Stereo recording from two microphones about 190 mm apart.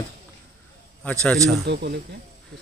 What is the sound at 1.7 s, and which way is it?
Speech, 60° right (ahead or behind).